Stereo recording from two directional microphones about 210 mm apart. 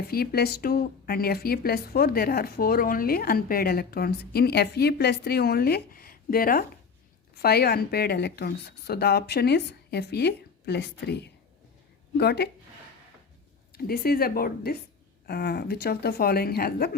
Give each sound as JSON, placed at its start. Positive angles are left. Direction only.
{"t": 0.1, "sound": "a woman's voice", "side_deg": 45}
{"t": 13.7, "sound": "a woman's voice", "side_deg": 45}